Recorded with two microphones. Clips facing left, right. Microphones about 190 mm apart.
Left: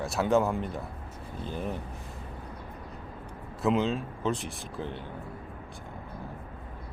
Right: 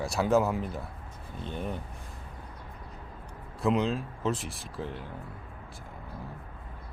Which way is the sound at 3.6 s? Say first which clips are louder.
Left 1 dB; centre (ahead or behind).